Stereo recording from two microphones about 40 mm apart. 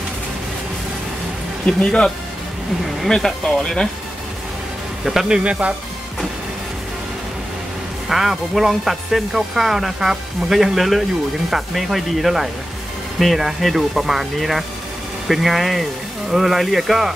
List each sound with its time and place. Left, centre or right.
1.8 s speech: left
3.2 s speech: centre
5.3 s speech: right
8.1 s speech: centre